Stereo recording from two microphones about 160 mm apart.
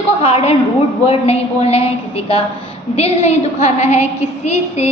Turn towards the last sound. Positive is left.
turn(degrees=45)  # may be behind; listen again after turning